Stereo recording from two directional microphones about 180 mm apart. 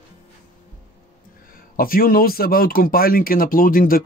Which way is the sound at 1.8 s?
55° left (ahead or behind).